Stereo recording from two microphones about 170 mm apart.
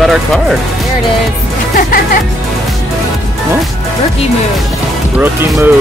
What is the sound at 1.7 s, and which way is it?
Speech, 55° left (ahead or behind).